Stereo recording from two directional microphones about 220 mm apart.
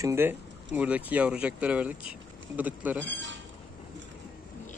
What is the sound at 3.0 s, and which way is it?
Speech, 55° right (ahead or behind).